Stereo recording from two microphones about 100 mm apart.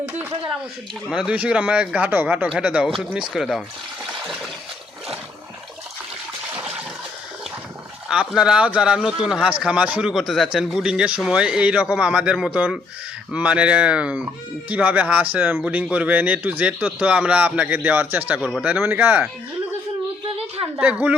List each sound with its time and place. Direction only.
1.1 s speech: 10° right (ahead or behind)
8.0 s speech: 10° right (ahead or behind)
20.7 s speech: 15° right (ahead or behind)